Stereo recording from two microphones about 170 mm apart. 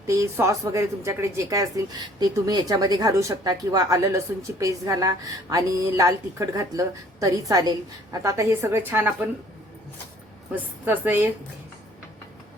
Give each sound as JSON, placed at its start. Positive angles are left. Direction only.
{"t": 0.1, "sound": "a woman's voice", "side_deg": -15}
{"t": 10.5, "sound": "a woman's voice", "side_deg": -10}